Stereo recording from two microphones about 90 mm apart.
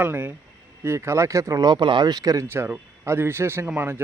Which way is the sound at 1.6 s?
60° right (ahead or behind).